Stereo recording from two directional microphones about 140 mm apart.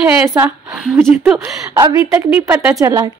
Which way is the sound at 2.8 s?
25° right (ahead or behind).